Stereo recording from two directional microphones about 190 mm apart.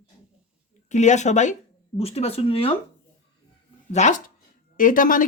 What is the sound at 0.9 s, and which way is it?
Speech, 40° left (ahead or behind).